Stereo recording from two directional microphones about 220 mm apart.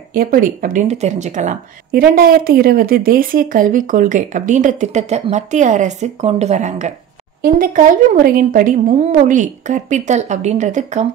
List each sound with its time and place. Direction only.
0.1 s a woman's voice: 40° right (ahead or behind)